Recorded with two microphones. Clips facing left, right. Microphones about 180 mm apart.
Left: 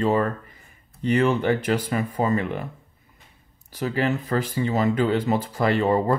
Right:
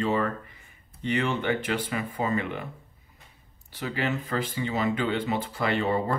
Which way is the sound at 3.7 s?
40° left (ahead or behind).